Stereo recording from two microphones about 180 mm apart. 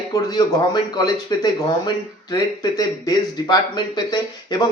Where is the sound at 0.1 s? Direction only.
20° left (ahead or behind).